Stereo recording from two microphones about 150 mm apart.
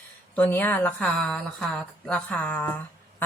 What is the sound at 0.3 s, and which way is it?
A woman's voice, 10° left (ahead or behind).